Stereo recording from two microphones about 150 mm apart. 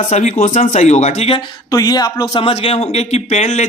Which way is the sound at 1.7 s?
25° left (ahead or behind).